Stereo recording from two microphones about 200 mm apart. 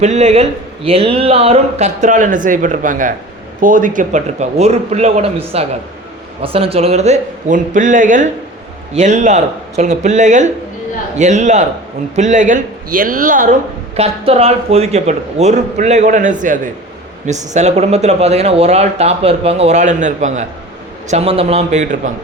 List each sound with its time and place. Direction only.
0.0 s speech: 35° right (ahead or behind)